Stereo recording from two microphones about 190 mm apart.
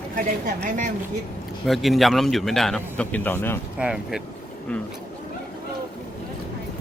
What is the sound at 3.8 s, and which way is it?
Speech, 5° right (ahead or behind).